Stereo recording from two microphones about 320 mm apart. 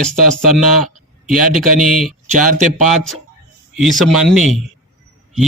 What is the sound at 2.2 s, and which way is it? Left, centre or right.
Speech, right.